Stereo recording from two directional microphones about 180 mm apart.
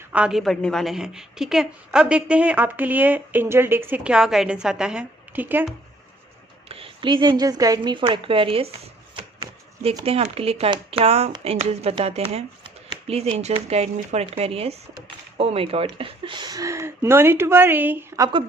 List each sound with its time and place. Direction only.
0.1 s a woman's voice: 5° right (ahead or behind)
6.7 s a woman's voice: 30° right (ahead or behind); by 18.3 s 10° right (ahead or behind)